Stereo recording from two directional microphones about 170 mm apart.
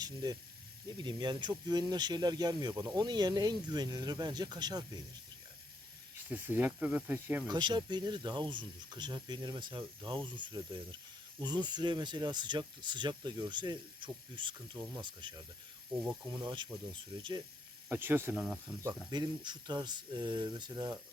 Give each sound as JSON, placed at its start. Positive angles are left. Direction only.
{"t": 0.0, "sound": "speech", "side_deg": -25}
{"t": 6.2, "sound": "speech", "side_deg": -10}
{"t": 7.5, "sound": "speech", "side_deg": -25}
{"t": 17.8, "sound": "speech", "side_deg": -15}
{"t": 18.8, "sound": "speech", "side_deg": -20}